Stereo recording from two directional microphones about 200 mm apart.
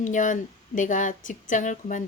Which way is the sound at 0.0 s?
40° left (ahead or behind).